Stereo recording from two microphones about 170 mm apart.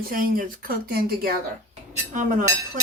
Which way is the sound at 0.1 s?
60° right (ahead or behind).